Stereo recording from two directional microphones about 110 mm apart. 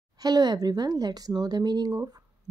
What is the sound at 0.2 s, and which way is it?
Speech, 35° right (ahead or behind).